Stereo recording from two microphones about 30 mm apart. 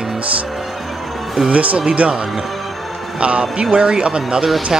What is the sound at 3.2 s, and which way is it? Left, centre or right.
Speech, right.